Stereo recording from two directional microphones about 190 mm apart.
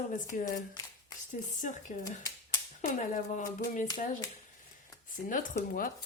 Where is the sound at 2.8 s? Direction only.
45° left (ahead or behind).